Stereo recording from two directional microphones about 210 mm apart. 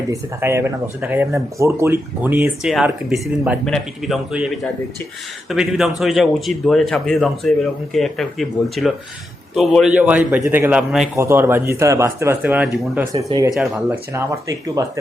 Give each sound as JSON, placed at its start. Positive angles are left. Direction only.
{"t": 0.1, "sound": "speech", "side_deg": -10}
{"t": 13.1, "sound": "speech", "side_deg": -25}